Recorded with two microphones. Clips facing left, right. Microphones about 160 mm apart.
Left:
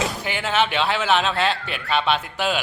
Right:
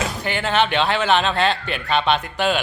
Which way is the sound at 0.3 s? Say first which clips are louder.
Right 4 dB; 10° left (ahead or behind).